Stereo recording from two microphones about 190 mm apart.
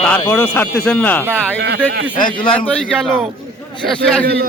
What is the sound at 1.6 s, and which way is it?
Speech, 65° right (ahead or behind).